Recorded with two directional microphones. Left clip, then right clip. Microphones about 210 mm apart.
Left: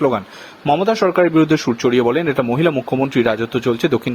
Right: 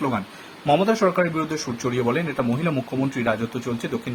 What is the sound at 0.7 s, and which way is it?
Speech, 35° left (ahead or behind).